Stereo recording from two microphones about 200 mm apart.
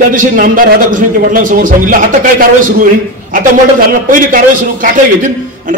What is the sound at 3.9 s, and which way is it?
A man's voice, 45° right (ahead or behind).